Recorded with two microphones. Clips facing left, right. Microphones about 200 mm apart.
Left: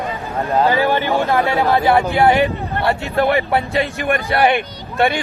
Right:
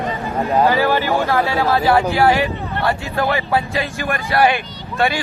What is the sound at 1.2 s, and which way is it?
Speech, 15° left (ahead or behind).